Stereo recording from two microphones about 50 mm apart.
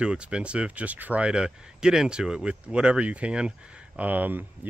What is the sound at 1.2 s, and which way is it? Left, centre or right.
Speech, centre.